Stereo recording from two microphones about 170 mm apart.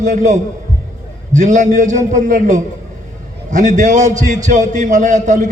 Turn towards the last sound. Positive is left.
turn(degrees=-45)  # may be behind; listen again after turning